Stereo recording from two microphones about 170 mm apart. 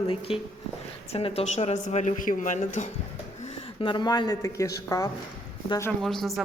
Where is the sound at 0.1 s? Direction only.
30° left (ahead or behind).